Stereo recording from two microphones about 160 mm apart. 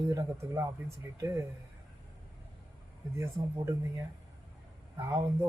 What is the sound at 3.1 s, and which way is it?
Speech, 15° right (ahead or behind).